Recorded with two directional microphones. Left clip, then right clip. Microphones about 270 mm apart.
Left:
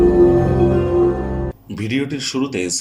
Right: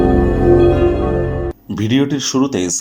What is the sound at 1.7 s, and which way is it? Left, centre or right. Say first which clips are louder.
Speech: right 6 dB; right.